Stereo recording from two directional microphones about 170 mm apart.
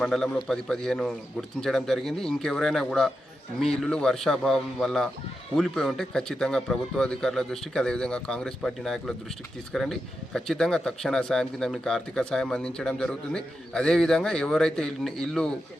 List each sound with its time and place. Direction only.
0.0 s a man's voice: centre (ahead or behind)